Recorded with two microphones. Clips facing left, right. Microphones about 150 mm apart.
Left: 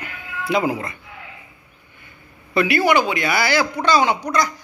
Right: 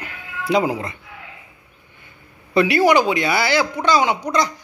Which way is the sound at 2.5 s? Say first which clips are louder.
Right 2 dB; 30° right (ahead or behind).